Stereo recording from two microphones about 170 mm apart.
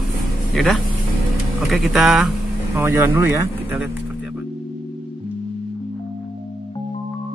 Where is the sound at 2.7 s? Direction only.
15° right (ahead or behind).